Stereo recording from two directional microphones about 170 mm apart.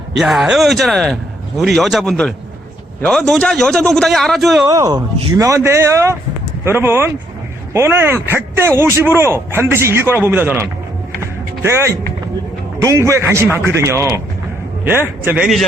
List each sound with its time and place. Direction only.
0.2 s speech: 5° right (ahead or behind)
4.6 s speech: 20° right (ahead or behind)
11.2 s music: 15° right (ahead or behind)
12.8 s speech: 15° right (ahead or behind)